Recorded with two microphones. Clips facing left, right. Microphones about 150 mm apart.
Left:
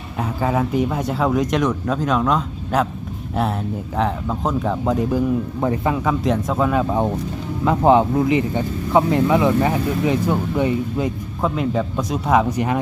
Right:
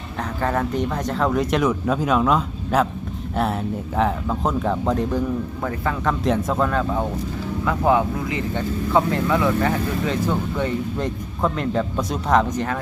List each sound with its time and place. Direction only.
0.2 s speech: 5° left (ahead or behind)
3.9 s speech: centre (ahead or behind)
5.5 s speech: 20° left (ahead or behind)
6.1 s speech: centre (ahead or behind)
7.6 s speech: 25° left (ahead or behind)